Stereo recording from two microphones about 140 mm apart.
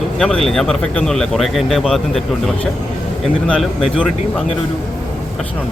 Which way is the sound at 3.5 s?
Centre (ahead or behind).